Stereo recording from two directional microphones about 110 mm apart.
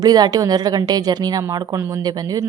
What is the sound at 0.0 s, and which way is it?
Speech, 35° right (ahead or behind).